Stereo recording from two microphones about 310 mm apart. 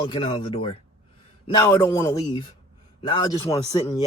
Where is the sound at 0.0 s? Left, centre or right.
Centre.